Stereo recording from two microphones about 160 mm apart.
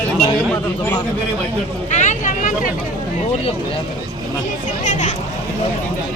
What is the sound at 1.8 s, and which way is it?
Vehicle, 50° left (ahead or behind).